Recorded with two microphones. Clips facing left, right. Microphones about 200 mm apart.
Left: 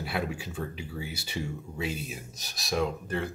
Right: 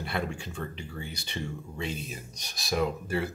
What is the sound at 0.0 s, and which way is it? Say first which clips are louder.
Speech: left 1 dB; 5° left (ahead or behind).